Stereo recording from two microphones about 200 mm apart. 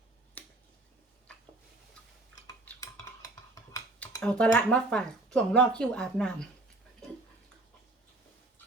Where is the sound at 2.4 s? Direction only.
10° left (ahead or behind).